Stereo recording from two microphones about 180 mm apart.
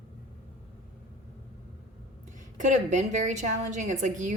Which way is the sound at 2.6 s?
45° right (ahead or behind).